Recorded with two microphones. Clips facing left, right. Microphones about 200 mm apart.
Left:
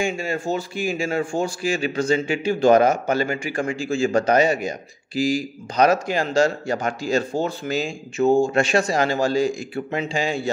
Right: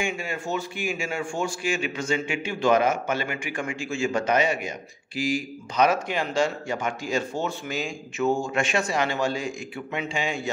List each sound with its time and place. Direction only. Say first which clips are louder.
0.0 s a man's voice: left 5 dB; 35° left (ahead or behind)